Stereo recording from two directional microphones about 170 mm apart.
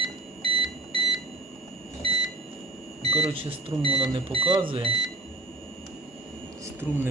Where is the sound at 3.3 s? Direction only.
35° right (ahead or behind).